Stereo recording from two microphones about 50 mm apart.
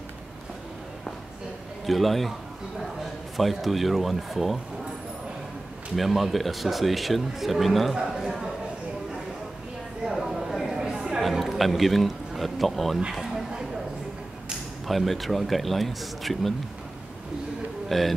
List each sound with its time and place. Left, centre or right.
1.9 s speech: centre
3.3 s speech: centre
5.9 s speech: centre
7.9 s a man's voice: centre
10.0 s a sound: centre
11.1 s a man's voice: centre
13.1 s a sound: centre
14.9 s speech: centre
17.8 s speech: centre